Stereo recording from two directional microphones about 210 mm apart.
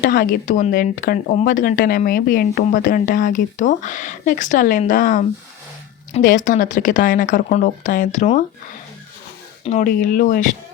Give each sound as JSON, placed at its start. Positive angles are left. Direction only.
{"t": 0.0, "sound": "speech", "side_deg": 45}
{"t": 9.6, "sound": "speech", "side_deg": 40}